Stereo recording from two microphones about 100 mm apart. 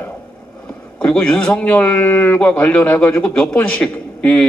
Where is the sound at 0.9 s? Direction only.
10° left (ahead or behind).